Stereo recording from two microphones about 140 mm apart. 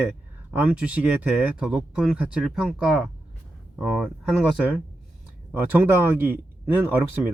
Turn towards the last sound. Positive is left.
turn(degrees=-10)  # may be behind; listen again after turning